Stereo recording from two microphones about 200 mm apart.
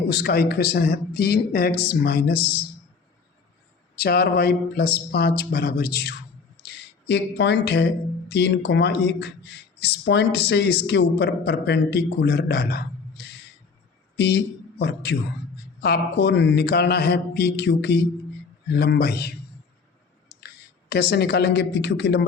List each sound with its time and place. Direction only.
0.1 s speech: 50° left (ahead or behind)
3.9 s speech: 50° left (ahead or behind)
20.9 s speech: 55° left (ahead or behind)